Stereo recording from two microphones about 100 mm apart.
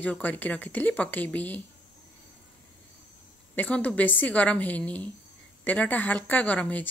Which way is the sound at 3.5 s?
15° left (ahead or behind).